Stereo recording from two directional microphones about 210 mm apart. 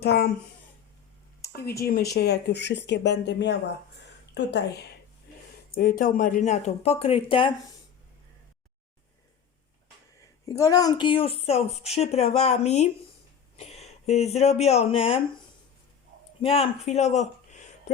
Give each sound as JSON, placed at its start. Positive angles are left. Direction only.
{"t": 0.0, "sound": "a woman's voice", "side_deg": 50}
{"t": 1.4, "sound": "a sound", "side_deg": 50}
{"t": 1.8, "sound": "a woman's voice", "side_deg": 50}
{"t": 5.7, "sound": "speech", "side_deg": 40}
{"t": 10.4, "sound": "a woman's voice", "side_deg": 15}
{"t": 16.4, "sound": "speech", "side_deg": 30}